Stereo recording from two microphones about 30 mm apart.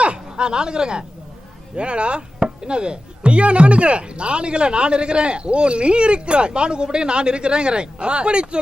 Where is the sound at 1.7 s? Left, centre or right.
Right.